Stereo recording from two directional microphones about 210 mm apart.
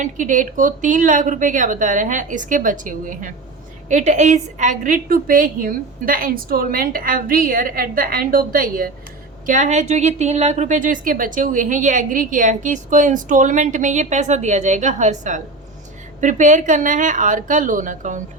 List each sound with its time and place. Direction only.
0.0 s a woman's voice: 40° right (ahead or behind)